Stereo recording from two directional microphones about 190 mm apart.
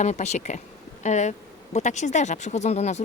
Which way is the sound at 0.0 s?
35° left (ahead or behind).